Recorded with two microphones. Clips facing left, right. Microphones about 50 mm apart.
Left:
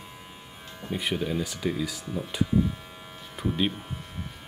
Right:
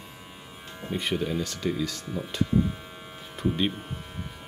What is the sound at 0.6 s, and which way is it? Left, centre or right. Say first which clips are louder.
Music: right 1 dB; centre.